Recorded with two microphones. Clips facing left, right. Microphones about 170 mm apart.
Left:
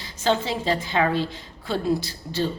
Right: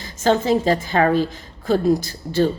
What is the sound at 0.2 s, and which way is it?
A woman's voice, 45° right (ahead or behind).